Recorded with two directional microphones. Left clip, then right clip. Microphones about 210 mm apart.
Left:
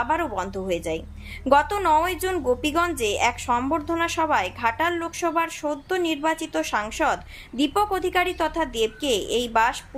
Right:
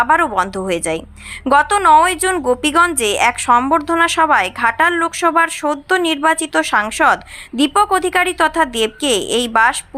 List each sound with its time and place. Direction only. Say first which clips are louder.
0.0 s a woman's voice: right 11 dB; 15° right (ahead or behind)